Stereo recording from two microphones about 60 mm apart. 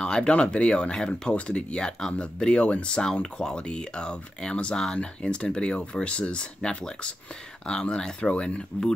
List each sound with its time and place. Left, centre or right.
0.0 s speech: centre